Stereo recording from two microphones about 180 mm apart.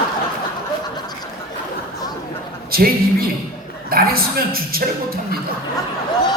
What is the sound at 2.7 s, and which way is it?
Speech, 55° right (ahead or behind).